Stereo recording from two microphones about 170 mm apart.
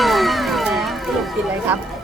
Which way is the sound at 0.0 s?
Centre (ahead or behind).